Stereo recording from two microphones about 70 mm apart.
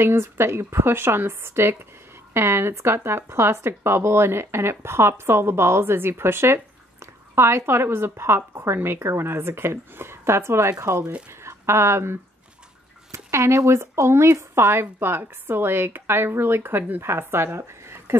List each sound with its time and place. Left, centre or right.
0.0 s speech: right